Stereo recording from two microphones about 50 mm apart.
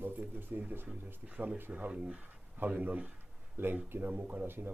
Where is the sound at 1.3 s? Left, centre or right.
Right.